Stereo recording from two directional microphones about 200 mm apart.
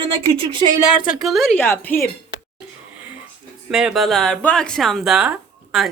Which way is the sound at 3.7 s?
5° right (ahead or behind).